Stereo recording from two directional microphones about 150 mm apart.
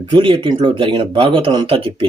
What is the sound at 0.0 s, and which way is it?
Speech, 35° right (ahead or behind).